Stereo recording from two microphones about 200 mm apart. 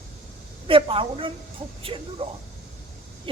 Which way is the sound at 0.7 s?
25° right (ahead or behind).